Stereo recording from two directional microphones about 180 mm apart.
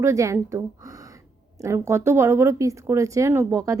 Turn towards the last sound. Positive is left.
turn(degrees=-15)  # may be behind; listen again after turning